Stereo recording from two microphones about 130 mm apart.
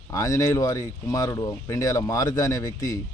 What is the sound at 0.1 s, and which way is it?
Speech, 25° left (ahead or behind).